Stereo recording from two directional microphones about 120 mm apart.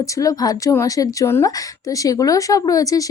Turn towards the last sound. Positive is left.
turn(degrees=30)  # may be behind; listen again after turning